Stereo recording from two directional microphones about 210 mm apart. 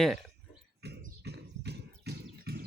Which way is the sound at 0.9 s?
50° right (ahead or behind).